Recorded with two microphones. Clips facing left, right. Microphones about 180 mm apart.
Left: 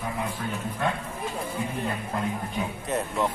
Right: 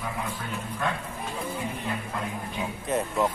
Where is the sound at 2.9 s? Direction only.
Centre (ahead or behind).